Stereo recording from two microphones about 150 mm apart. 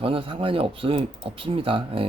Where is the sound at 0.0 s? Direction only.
40° right (ahead or behind).